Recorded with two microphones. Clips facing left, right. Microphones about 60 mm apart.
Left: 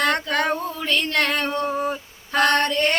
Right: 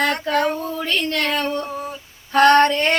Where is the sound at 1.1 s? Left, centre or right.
Left.